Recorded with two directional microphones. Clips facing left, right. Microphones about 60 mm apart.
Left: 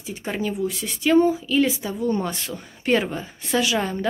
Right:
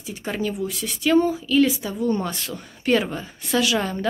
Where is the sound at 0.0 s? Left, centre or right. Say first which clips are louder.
Even; left.